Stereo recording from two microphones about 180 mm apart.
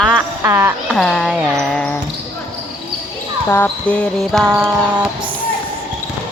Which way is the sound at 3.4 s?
10° left (ahead or behind).